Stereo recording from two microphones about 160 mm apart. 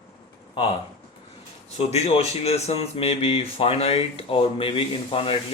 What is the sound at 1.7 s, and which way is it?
Speech, 40° left (ahead or behind).